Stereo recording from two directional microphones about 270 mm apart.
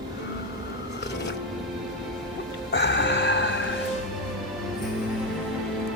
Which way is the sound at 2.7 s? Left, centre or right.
Left.